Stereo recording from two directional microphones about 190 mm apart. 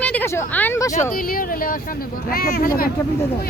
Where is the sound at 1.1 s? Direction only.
50° left (ahead or behind).